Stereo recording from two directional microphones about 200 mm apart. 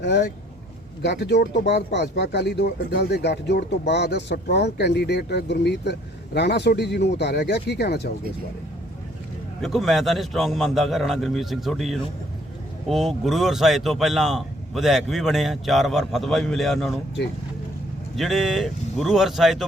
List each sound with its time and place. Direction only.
0.0 s speech: 60° left (ahead or behind)
9.6 s a man's voice: centre (ahead or behind)
18.2 s a man's voice: centre (ahead or behind)